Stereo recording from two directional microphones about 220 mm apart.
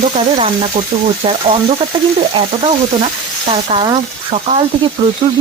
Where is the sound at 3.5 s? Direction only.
25° right (ahead or behind).